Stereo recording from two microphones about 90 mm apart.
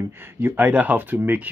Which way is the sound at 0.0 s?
25° right (ahead or behind).